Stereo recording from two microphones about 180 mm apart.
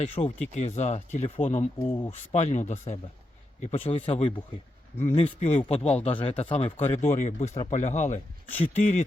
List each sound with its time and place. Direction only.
0.0 s speech: 40° left (ahead or behind)
1.9 s speech: 20° left (ahead or behind)
2.1 s speech: 40° left (ahead or behind)